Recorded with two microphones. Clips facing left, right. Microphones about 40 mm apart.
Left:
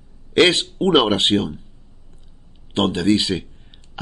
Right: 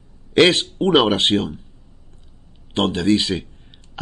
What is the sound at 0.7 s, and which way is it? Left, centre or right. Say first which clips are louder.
Speech: even; right.